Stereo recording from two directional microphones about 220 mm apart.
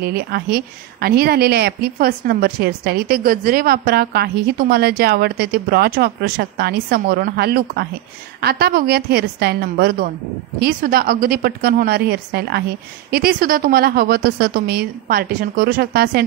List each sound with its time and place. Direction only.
0.0 s a woman's voice: 45° right (ahead or behind)